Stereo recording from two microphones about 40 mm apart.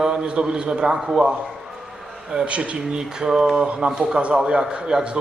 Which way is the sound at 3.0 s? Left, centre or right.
Centre.